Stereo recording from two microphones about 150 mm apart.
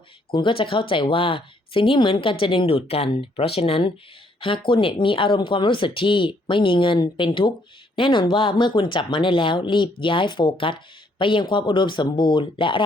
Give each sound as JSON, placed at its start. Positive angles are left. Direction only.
{"t": 0.3, "sound": "speech", "side_deg": 35}